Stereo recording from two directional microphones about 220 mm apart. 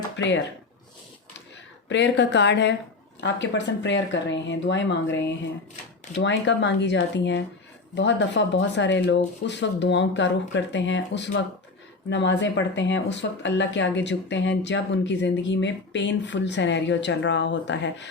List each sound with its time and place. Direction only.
0.2 s speech: 55° left (ahead or behind)
1.9 s speech: 55° left (ahead or behind)